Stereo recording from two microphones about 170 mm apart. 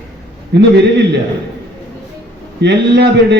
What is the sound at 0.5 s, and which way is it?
Speech, 85° right.